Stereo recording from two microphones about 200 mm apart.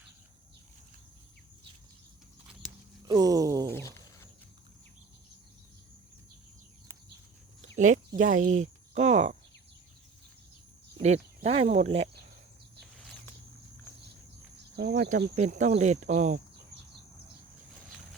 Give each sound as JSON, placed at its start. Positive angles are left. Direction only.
{"t": 3.1, "sound": "speech", "side_deg": -20}
{"t": 3.8, "sound": "a sound", "side_deg": 15}
{"t": 7.8, "sound": "speech", "side_deg": -40}
{"t": 10.9, "sound": "cricket", "side_deg": -35}
{"t": 11.4, "sound": "speech", "side_deg": -30}
{"t": 14.8, "sound": "speech", "side_deg": -55}
{"t": 15.1, "sound": "speech", "side_deg": -35}